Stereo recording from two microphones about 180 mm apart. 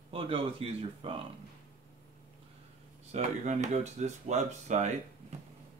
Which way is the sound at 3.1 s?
40° right (ahead or behind).